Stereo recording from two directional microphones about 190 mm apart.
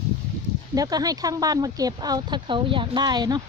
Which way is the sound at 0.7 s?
20° right (ahead or behind).